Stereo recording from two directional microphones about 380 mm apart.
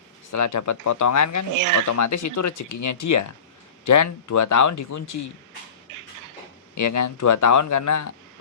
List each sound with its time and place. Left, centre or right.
0.3 s speech: left
1.5 s speech: right
1.9 s speech: left
5.9 s a sound: right
6.7 s speech: left